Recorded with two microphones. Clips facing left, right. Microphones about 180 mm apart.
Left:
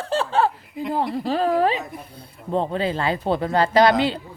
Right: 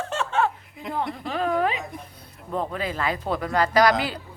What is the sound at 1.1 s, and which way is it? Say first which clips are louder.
Speech: left 5 dB; 35° left (ahead or behind).